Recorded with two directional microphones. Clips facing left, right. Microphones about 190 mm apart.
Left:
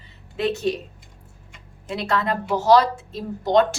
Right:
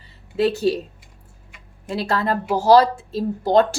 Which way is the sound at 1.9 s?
35° right (ahead or behind).